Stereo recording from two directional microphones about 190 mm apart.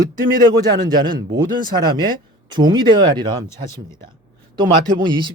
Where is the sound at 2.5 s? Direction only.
25° right (ahead or behind).